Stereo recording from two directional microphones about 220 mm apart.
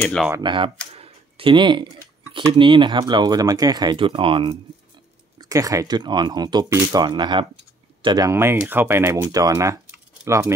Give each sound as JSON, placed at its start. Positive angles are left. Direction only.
{"t": 0.0, "sound": "speech", "side_deg": 5}
{"t": 0.3, "sound": "speech", "side_deg": -20}
{"t": 0.9, "sound": "a sound", "side_deg": -25}
{"t": 2.3, "sound": "speech", "side_deg": -20}